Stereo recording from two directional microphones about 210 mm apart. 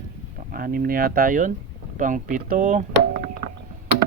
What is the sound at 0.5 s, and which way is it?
Speech, 45° right (ahead or behind).